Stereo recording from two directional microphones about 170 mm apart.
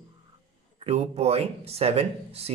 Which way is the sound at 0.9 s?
40° right (ahead or behind).